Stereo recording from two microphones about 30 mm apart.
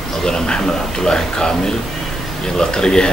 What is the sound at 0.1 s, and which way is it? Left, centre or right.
A man's voice, centre.